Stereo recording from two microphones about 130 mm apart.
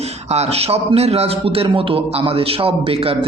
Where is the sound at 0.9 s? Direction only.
55° right (ahead or behind).